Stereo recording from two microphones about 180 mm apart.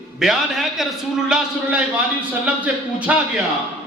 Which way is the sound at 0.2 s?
Centre (ahead or behind).